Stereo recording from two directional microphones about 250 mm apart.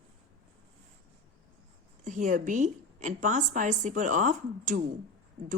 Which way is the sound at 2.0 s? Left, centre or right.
Right.